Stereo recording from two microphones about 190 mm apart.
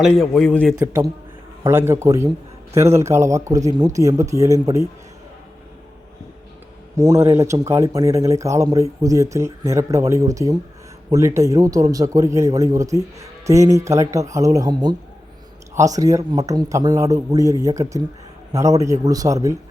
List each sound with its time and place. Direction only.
0.0 s a man's voice: centre (ahead or behind)
0.8 s a man's voice: 20° right (ahead or behind)
6.9 s a man's voice: 15° right (ahead or behind)